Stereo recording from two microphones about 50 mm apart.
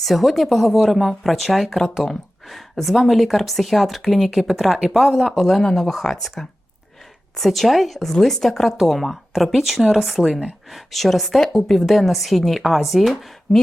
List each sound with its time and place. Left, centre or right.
0.0 s a woman's voice: centre